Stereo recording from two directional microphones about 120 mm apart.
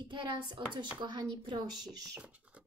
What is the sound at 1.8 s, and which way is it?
Speech, 5° right (ahead or behind).